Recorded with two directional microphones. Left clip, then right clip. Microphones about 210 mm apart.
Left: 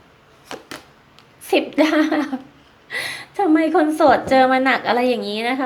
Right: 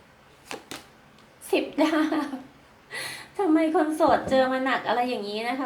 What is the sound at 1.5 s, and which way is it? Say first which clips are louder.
A woman's voice: left 7 dB; 45° left (ahead or behind).